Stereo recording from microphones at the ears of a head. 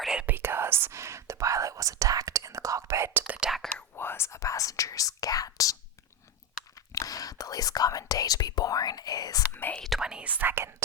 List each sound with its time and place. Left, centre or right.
0.3 s whispering: right
3.9 s whispering: left
6.9 s whispering: left
10.2 s whispering: right